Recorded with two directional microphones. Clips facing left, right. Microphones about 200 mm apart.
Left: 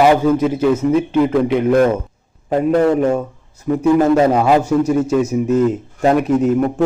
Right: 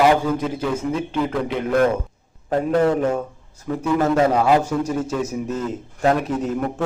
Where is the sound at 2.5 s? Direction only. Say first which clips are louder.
Left 4 dB; 20° left (ahead or behind).